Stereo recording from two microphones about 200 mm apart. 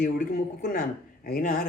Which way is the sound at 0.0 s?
40° left (ahead or behind).